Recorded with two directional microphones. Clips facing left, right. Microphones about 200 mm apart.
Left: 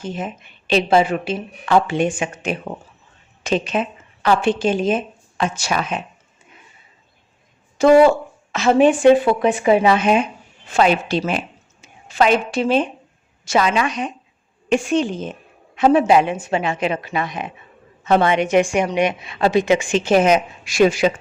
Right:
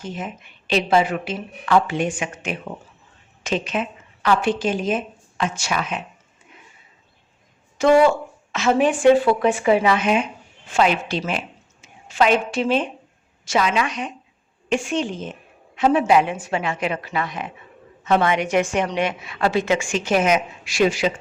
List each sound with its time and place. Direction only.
0.0 s a woman's voice: 30° left (ahead or behind)
7.8 s a woman's voice: 35° left (ahead or behind); by 17.5 s 20° left (ahead or behind)
18.0 s a woman's voice: 30° left (ahead or behind)
20.7 s speech: 50° left (ahead or behind)